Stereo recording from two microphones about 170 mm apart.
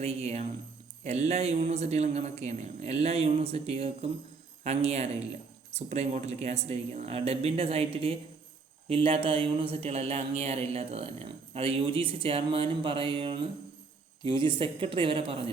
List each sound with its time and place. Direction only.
0.0 s speech: 40° right (ahead or behind)